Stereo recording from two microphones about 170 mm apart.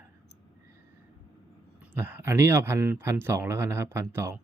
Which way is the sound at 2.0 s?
15° right (ahead or behind).